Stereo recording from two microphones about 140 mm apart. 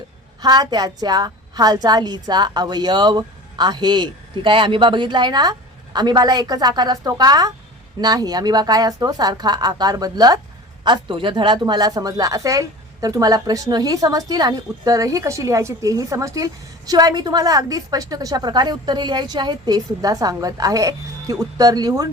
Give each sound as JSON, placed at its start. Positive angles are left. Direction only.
{"t": 0.4, "sound": "a woman's voice", "side_deg": -30}